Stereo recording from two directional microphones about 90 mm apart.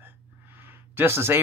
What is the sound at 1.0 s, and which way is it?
Speech, 25° right (ahead or behind).